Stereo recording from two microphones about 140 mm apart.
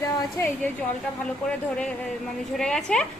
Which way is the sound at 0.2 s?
15° left (ahead or behind).